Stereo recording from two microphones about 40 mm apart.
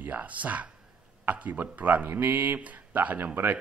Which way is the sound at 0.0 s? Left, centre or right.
Right.